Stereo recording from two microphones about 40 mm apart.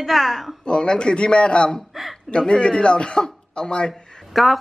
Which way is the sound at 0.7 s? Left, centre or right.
Left.